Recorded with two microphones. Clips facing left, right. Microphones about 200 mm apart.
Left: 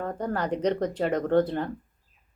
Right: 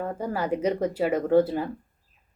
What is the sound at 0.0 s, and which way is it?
Speech, 5° right (ahead or behind).